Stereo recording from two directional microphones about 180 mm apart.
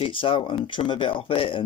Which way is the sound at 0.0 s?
30° left (ahead or behind).